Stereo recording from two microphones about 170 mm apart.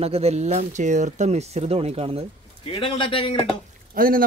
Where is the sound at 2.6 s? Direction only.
30° left (ahead or behind).